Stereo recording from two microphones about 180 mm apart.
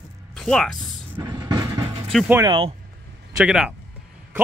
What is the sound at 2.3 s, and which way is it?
Speech, 15° right (ahead or behind).